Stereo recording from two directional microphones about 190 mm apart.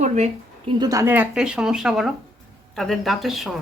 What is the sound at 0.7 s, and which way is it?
Speech, 20° right (ahead or behind).